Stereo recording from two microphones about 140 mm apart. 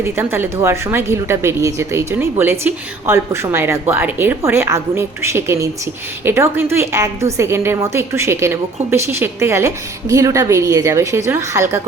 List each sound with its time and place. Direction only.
0.0 s a woman's voice: 15° right (ahead or behind)